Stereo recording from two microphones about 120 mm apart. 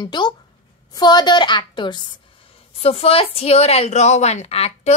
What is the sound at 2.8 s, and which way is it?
A woman's voice, 55° left (ahead or behind).